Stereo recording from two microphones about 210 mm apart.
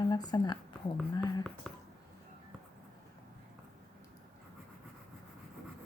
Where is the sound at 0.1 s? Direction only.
20° left (ahead or behind).